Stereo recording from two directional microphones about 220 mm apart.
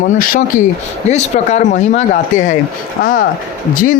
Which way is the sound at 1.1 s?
30° left (ahead or behind).